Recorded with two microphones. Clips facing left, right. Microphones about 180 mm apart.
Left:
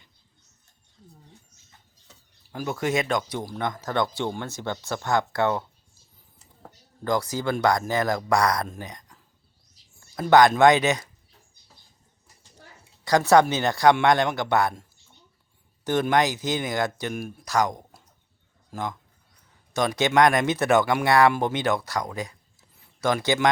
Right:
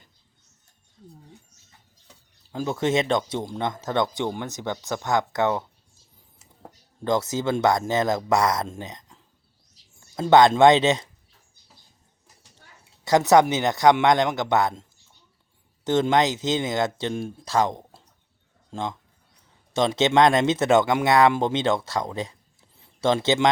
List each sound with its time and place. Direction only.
2.5 s speech: 20° right (ahead or behind)
13.1 s speech: 20° right (ahead or behind)